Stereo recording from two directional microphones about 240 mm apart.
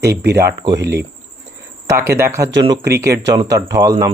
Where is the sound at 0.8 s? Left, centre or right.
Right.